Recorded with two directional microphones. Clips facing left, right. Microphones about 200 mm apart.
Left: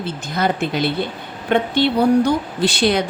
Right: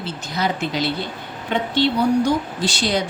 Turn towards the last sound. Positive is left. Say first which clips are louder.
# left 4 dB
turn(degrees=60)  # may be behind; listen again after turning